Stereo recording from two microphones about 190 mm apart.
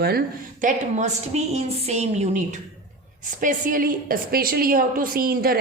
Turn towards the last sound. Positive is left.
turn(degrees=-50)  # may be behind; listen again after turning